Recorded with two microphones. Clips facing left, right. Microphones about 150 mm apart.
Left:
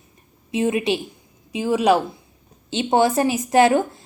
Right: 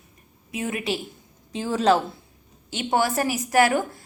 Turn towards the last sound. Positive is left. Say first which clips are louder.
# left 4 dB
turn(degrees=25)  # may be behind; listen again after turning